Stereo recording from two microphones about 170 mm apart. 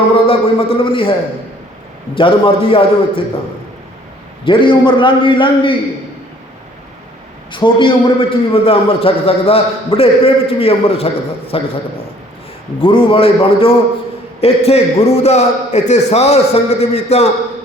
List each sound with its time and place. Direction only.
0.3 s a man's voice: 30° left (ahead or behind)
2.1 s a man's voice: 30° left (ahead or behind)
4.4 s a man's voice: 30° left (ahead or behind)
7.5 s a man's voice: 30° left (ahead or behind)
12.8 s a man's voice: 30° left (ahead or behind)